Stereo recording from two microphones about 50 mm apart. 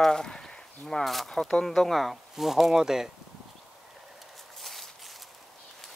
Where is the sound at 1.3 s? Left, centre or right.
Centre.